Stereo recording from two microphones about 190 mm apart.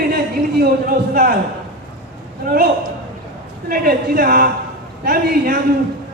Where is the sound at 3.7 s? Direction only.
50° right (ahead or behind).